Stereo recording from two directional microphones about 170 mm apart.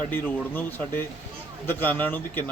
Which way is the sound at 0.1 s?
10° left (ahead or behind).